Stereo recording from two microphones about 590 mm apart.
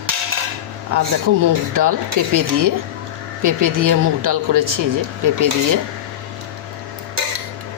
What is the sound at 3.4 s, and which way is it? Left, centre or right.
Speech, right.